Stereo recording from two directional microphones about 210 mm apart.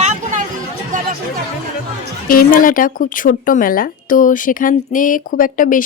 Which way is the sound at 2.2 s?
40° left (ahead or behind).